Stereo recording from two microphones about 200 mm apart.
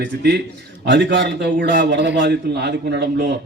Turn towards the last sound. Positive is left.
turn(degrees=-55)  # may be behind; listen again after turning